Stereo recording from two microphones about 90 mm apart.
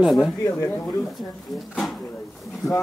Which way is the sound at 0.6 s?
25° left (ahead or behind).